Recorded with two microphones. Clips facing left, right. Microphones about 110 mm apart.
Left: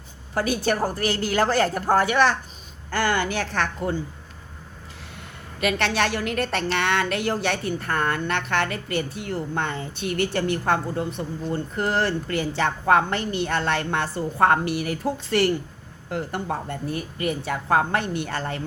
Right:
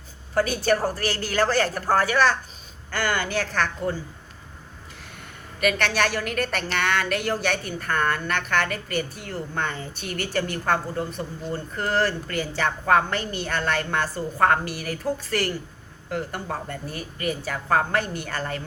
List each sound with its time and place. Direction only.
0.6 s a woman's voice: 25° left (ahead or behind)
5.5 s a woman's voice: 25° left (ahead or behind)